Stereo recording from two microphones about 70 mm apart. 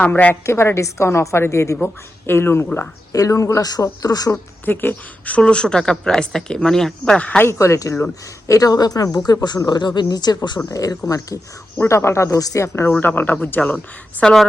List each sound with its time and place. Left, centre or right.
0.0 s speech: left
0.4 s a woman's voice: left
3.1 s speech: left
4.0 s speech: left
4.6 s a woman's voice: left
7.4 s speech: left
8.4 s speech: left
10.7 s speech: left
11.8 s speech: left
12.4 s speech: left
12.6 s a woman's voice: left
13.0 s speech: left
14.2 s a woman's voice: centre